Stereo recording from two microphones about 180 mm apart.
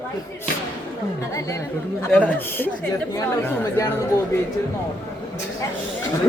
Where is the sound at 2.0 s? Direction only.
10° left (ahead or behind).